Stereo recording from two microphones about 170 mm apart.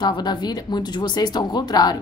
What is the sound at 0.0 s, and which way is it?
A woman's voice, 25° left (ahead or behind).